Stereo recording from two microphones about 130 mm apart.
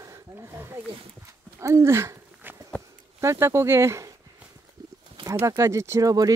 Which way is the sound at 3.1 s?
20° right (ahead or behind).